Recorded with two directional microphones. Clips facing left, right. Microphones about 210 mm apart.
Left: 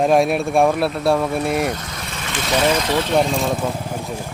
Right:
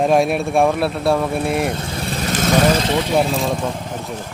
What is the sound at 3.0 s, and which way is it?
Speech, 5° right (ahead or behind).